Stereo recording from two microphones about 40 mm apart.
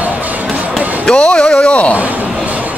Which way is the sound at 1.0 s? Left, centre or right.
Left.